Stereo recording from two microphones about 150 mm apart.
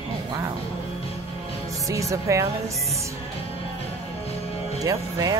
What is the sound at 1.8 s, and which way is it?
Speech, 20° right (ahead or behind).